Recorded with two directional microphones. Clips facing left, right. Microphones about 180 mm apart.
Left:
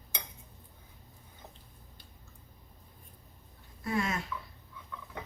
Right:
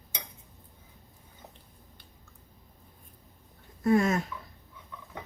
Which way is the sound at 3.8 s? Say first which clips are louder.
Right 9 dB; 45° right (ahead or behind).